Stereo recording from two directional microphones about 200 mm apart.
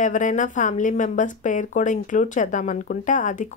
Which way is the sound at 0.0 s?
40° left (ahead or behind).